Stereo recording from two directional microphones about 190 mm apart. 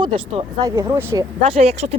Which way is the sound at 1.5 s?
35° right (ahead or behind).